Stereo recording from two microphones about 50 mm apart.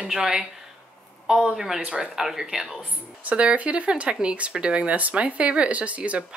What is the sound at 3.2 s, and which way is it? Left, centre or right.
Speech, right.